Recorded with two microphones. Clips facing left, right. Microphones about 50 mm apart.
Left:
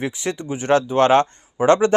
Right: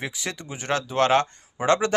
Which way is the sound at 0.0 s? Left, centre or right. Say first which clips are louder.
Left 7 dB; left.